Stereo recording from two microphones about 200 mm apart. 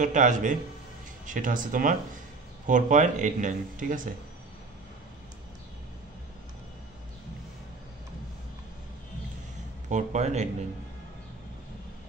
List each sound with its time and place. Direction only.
0.0 s speech: 40° right (ahead or behind)
9.8 s speech: 35° right (ahead or behind)